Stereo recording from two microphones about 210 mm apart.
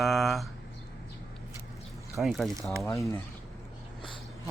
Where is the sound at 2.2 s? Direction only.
Centre (ahead or behind).